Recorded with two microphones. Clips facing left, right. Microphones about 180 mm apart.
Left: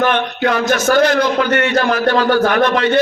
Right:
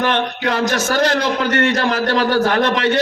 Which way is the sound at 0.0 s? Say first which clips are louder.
Left 3 dB; 30° right (ahead or behind).